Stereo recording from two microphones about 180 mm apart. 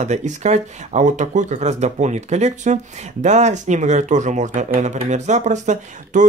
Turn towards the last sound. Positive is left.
turn(degrees=-45)  # may be behind; listen again after turning